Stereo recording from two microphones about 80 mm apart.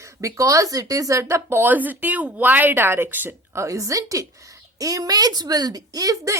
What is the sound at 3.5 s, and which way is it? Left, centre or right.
Speech, right.